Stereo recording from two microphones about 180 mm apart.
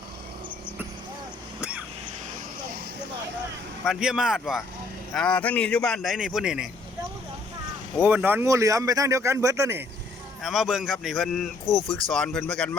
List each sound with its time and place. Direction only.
3.8 s speech: 5° right (ahead or behind)
8.0 s speech: 10° right (ahead or behind)
10.4 s speech: centre (ahead or behind)